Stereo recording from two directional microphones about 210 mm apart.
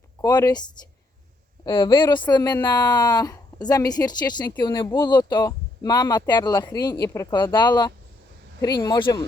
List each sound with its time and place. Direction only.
0.2 s a woman's voice: 15° left (ahead or behind)
1.6 s a woman's voice: 20° left (ahead or behind)